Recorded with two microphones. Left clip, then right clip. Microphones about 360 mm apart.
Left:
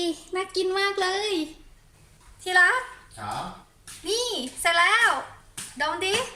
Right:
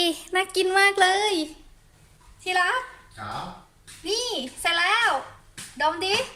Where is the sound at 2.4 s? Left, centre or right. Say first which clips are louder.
Left 4 dB; centre.